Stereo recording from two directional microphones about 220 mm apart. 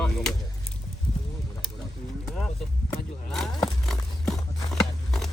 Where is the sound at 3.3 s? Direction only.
Centre (ahead or behind).